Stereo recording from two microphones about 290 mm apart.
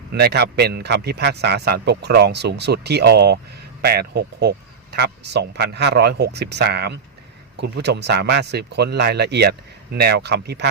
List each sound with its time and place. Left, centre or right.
0.1 s a man's voice: right